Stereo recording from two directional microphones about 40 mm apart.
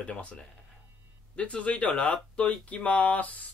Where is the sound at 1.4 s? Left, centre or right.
Left.